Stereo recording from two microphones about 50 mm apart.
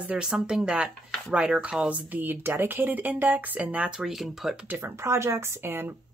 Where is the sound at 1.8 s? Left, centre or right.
Right.